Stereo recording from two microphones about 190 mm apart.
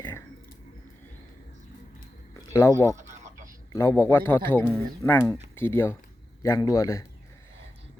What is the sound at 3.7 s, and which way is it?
A man's voice, 15° left (ahead or behind).